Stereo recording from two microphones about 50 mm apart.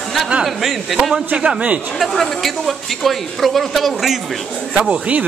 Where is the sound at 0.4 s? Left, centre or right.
Centre.